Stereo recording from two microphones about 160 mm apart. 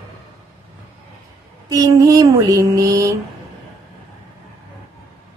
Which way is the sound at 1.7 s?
20° right (ahead or behind).